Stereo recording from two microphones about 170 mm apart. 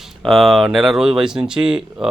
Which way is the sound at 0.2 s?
Centre (ahead or behind).